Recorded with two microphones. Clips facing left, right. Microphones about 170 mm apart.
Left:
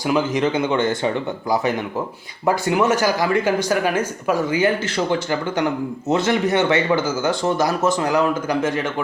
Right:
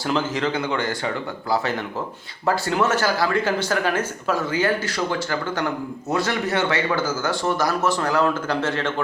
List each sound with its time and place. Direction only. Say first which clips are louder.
0.0 s speech: left 4 dB; 15° left (ahead or behind)